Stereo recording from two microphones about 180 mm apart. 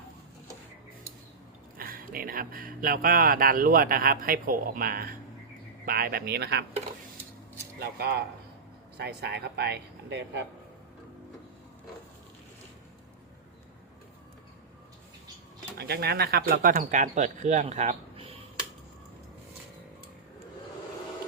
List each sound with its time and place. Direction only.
1.8 s speech: 55° right (ahead or behind); by 6.7 s 70° right (ahead or behind)
7.8 s speech: 60° right (ahead or behind)
15.8 s speech: 65° right (ahead or behind); by 18.3 s 35° right (ahead or behind)